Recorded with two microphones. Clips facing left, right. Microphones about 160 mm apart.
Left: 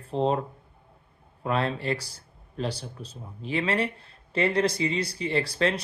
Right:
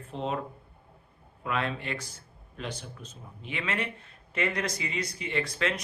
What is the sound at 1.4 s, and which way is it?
Speech, 35° left (ahead or behind).